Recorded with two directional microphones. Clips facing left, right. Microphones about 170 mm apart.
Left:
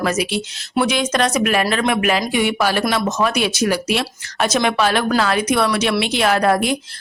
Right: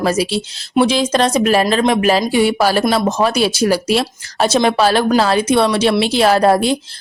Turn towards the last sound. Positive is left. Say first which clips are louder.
# right 4 dB
turn(degrees=-30)  # may be behind; listen again after turning